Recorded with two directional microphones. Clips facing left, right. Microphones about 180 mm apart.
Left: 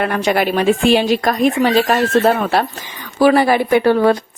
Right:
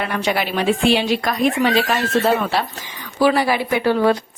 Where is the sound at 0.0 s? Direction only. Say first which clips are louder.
Left 5 dB; 45° left (ahead or behind).